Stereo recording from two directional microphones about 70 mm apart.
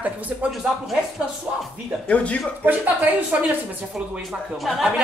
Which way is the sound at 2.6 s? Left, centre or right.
Right.